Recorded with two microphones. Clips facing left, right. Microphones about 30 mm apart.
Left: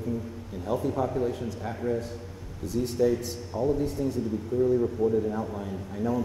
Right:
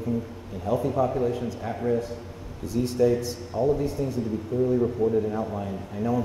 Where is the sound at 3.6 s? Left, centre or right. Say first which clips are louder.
Right 3 dB; right.